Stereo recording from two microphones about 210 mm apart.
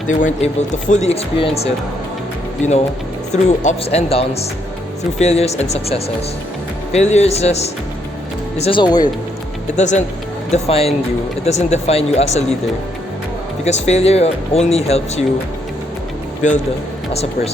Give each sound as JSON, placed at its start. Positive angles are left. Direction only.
{"t": 0.1, "sound": "speech", "side_deg": 35}
{"t": 9.7, "sound": "speech", "side_deg": 35}
{"t": 13.7, "sound": "speech", "side_deg": 30}
{"t": 17.1, "sound": "speech", "side_deg": 30}